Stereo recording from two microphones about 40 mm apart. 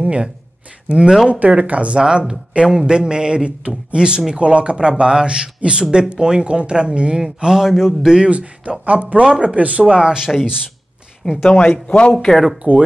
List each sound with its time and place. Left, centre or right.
0.0 s speech: right
1.3 s speech: right
2.0 s a man's voice: right
8.3 s speech: right
11.4 s speech: left
12.1 s speech: centre
12.7 s speech: right